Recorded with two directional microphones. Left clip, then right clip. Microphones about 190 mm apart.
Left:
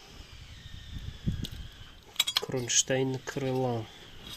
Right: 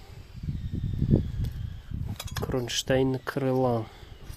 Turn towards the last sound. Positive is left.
turn(degrees=-15)  # may be behind; listen again after turning